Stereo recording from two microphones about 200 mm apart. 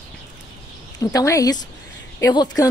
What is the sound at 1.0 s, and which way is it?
A woman's voice, 15° left (ahead or behind).